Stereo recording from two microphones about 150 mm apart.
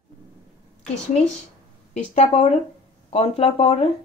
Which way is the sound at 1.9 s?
45° left (ahead or behind).